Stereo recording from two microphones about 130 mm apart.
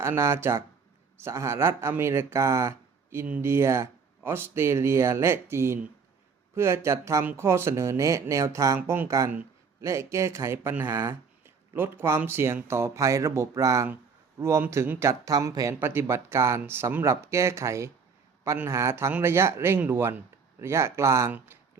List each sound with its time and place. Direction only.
0.0 s speech: 20° right (ahead or behind)